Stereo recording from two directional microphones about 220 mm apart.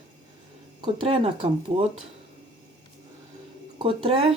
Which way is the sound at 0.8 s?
25° right (ahead or behind).